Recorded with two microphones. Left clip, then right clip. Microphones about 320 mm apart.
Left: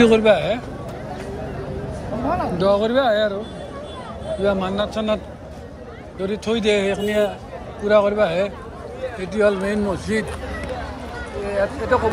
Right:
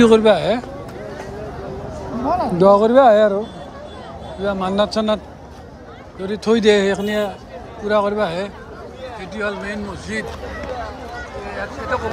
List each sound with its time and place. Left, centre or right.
0.0 s a man's voice: centre
2.3 s a man's voice: right
4.4 s a man's voice: centre
11.4 s speech: centre